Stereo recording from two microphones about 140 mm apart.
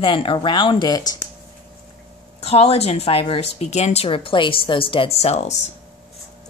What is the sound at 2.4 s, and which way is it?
A woman's voice, 45° left (ahead or behind).